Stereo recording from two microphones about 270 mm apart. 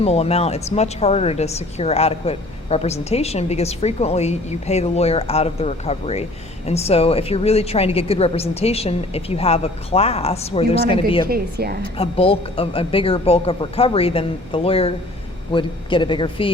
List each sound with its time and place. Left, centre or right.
0.0 s a woman's voice: left
11.3 s a woman's voice: right
11.8 s a woman's voice: left